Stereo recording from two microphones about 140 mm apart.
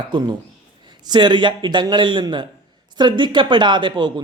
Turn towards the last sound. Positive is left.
turn(degrees=-35)  # may be behind; listen again after turning